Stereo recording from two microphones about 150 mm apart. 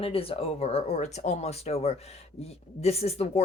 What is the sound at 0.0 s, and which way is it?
Speech, 40° left (ahead or behind).